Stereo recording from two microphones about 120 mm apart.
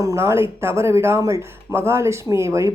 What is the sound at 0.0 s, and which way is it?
Speech, 25° right (ahead or behind).